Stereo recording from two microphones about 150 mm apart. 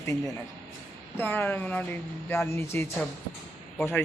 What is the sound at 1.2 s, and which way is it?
A man's voice, 15° left (ahead or behind).